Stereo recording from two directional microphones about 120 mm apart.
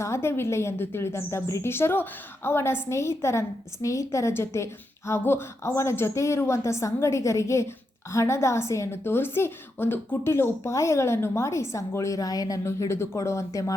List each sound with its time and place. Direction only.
0.0 s a woman's voice: 20° left (ahead or behind)